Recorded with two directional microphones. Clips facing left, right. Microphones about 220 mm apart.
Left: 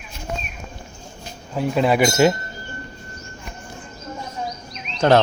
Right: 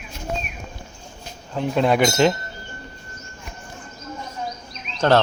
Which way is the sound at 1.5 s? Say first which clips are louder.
Left 1 dB; 5° left (ahead or behind).